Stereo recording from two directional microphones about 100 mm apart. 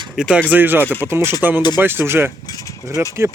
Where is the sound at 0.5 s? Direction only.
20° right (ahead or behind).